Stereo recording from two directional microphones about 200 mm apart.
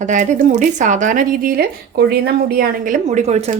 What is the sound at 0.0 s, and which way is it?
Speech, 40° right (ahead or behind).